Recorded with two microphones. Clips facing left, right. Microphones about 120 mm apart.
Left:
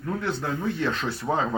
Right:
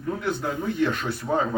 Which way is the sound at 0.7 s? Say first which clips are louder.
Right 3 dB; 15° right (ahead or behind).